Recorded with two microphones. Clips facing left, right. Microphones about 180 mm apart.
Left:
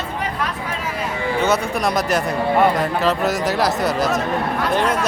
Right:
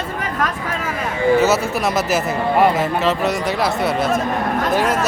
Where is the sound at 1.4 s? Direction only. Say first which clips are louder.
Right 2 dB; 5° right (ahead or behind).